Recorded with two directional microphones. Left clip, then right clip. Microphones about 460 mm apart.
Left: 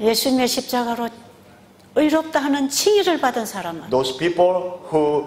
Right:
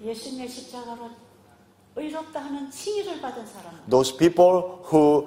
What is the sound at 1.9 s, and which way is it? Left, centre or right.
Speech, left.